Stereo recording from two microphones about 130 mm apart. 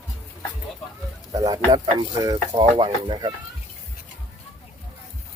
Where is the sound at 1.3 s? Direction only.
30° right (ahead or behind).